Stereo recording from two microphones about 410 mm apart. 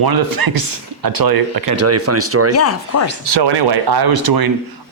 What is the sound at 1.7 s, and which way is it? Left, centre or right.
Speech, right.